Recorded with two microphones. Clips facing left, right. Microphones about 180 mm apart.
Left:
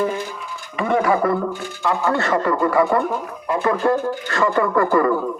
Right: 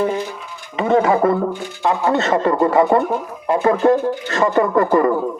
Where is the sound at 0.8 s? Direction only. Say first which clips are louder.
Right 3 dB; 25° right (ahead or behind).